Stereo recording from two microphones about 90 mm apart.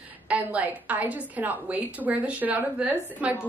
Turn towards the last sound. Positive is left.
turn(degrees=-15)  # may be behind; listen again after turning